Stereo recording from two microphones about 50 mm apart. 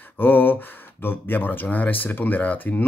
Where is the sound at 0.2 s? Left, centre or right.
Left.